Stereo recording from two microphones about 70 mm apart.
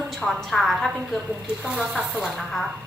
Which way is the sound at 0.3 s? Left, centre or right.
Centre.